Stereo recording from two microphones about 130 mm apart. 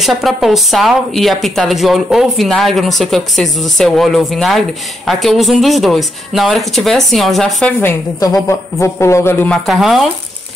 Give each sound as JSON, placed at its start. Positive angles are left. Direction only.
{"t": 0.0, "sound": "a woman's voice", "side_deg": 0}
{"t": 8.5, "sound": "a man's voice", "side_deg": 20}
{"t": 9.5, "sound": "a woman's voice", "side_deg": 0}